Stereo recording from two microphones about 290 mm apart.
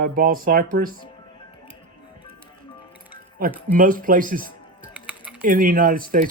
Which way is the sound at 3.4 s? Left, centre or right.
Right.